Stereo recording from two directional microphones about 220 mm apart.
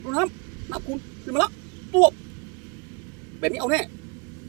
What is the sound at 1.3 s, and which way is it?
Speech, 5° right (ahead or behind).